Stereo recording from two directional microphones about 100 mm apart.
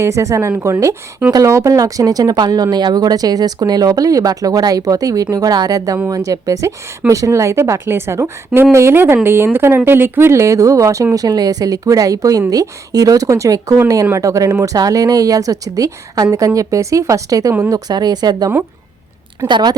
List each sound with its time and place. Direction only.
0.0 s a woman's voice: 30° right (ahead or behind); by 19.7 s 50° right (ahead or behind)